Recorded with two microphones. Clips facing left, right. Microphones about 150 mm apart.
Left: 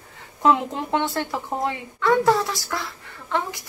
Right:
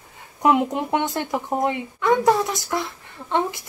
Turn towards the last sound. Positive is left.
turn(degrees=-20)  # may be behind; listen again after turning